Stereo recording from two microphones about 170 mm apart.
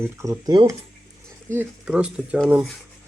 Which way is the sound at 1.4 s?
10° right (ahead or behind).